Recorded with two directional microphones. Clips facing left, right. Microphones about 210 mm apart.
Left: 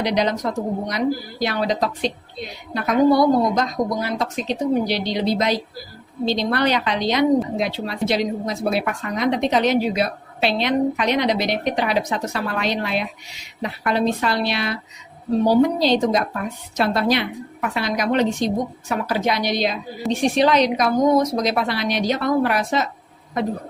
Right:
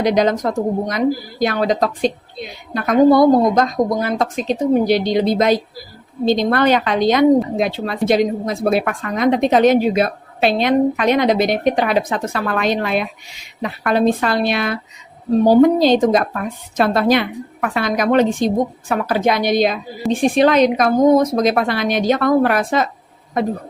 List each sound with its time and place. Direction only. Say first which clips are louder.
0.0 s a woman's voice: right 5 dB; 45° right (ahead or behind)